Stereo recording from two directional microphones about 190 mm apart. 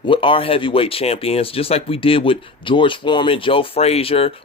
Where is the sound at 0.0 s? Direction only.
25° left (ahead or behind).